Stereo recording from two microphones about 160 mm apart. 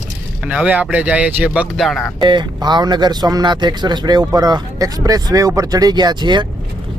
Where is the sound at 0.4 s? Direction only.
10° right (ahead or behind).